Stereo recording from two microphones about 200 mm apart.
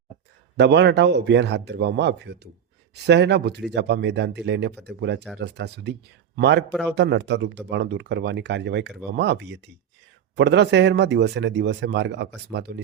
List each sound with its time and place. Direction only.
0.5 s speech: 60° right (ahead or behind)